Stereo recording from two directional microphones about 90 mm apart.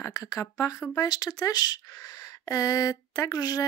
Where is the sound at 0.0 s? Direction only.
40° left (ahead or behind).